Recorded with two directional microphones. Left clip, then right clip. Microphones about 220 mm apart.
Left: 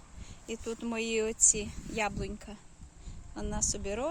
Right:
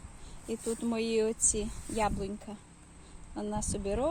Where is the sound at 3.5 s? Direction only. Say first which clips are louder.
Even; centre (ahead or behind).